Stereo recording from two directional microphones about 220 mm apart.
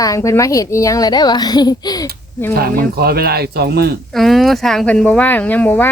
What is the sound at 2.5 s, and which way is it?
Speech, 45° right (ahead or behind).